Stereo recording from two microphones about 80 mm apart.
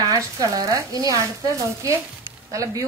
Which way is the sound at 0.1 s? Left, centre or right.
Right.